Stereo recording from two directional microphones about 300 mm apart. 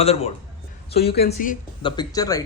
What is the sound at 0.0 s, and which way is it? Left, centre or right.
Speech, left.